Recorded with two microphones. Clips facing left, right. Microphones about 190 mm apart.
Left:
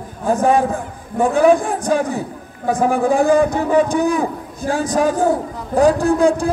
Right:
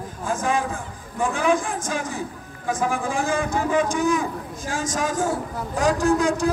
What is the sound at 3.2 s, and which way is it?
A man's voice, 35° left (ahead or behind).